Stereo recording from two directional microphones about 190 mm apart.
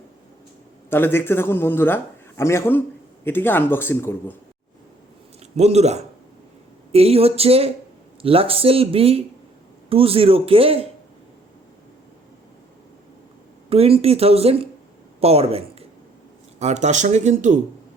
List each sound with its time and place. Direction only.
0.9 s a man's voice: 10° left (ahead or behind)
5.5 s speech: 35° right (ahead or behind)
13.7 s speech: 30° right (ahead or behind)